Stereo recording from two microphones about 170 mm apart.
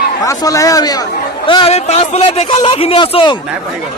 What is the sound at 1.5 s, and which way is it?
A man's voice, 35° left (ahead or behind).